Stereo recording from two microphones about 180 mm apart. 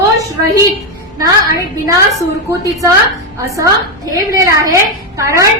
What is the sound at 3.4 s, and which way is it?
A woman's voice, 15° right (ahead or behind).